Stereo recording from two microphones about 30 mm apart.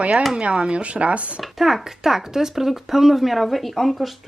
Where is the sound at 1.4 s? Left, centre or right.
Centre.